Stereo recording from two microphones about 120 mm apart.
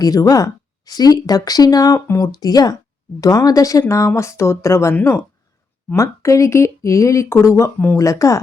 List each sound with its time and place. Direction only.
0.0 s speech: 30° left (ahead or behind)